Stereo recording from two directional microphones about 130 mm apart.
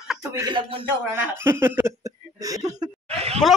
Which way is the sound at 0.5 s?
40° right (ahead or behind).